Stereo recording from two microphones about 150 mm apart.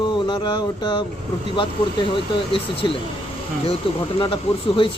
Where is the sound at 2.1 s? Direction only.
35° left (ahead or behind).